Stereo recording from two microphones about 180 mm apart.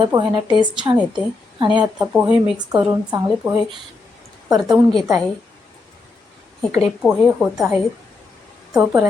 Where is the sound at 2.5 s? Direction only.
25° right (ahead or behind).